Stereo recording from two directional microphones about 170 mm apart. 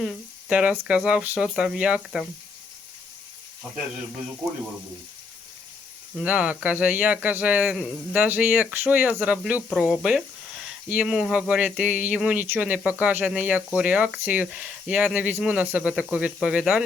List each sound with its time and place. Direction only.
0.0 s speech: 5° right (ahead or behind)
6.1 s speech: 5° right (ahead or behind)